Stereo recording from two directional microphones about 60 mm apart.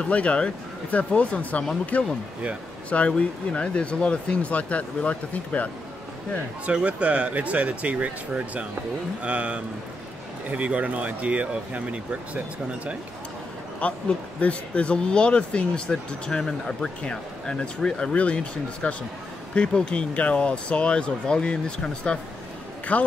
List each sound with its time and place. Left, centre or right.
0.0 s speech: left
6.6 s speech: right
13.7 s speech: left